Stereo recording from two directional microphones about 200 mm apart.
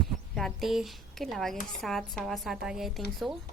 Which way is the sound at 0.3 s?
Centre (ahead or behind).